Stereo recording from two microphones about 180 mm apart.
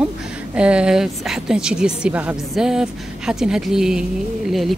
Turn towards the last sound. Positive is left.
turn(degrees=0)  # may be behind; listen again after turning